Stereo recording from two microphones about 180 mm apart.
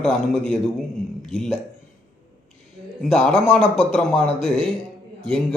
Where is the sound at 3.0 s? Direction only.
5° left (ahead or behind).